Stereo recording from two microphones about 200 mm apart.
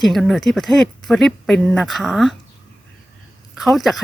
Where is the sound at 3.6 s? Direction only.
Centre (ahead or behind).